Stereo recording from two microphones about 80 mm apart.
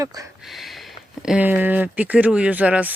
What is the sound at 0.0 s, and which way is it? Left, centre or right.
Speech, right.